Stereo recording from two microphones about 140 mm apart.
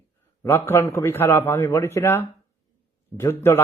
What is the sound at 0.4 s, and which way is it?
A man's voice, 15° left (ahead or behind).